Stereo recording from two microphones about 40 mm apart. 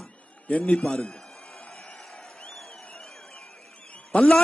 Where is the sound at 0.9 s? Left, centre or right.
Centre.